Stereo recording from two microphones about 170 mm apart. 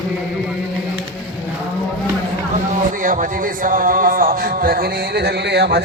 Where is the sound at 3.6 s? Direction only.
50° right (ahead or behind).